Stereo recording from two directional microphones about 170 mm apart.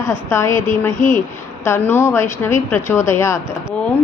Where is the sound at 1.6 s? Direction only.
15° left (ahead or behind).